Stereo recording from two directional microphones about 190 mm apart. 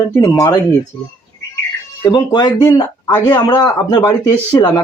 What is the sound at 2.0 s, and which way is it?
Speech, 20° left (ahead or behind).